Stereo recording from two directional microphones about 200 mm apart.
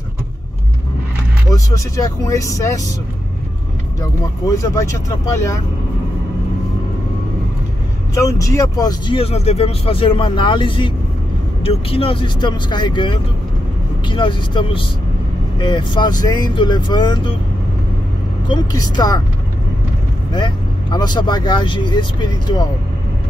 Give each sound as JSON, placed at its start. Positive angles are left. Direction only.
{"t": 1.5, "sound": "speech", "side_deg": 15}
{"t": 4.0, "sound": "speech", "side_deg": 15}
{"t": 8.1, "sound": "speech", "side_deg": 15}
{"t": 18.5, "sound": "speech", "side_deg": 20}
{"t": 20.3, "sound": "speech", "side_deg": 20}